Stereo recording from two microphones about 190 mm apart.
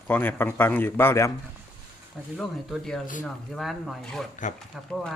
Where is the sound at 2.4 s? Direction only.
Centre (ahead or behind).